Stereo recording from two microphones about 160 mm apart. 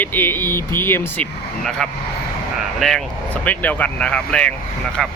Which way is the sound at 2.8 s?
Centre (ahead or behind).